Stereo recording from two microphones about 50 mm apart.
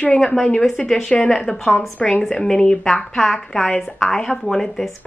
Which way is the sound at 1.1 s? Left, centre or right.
Left.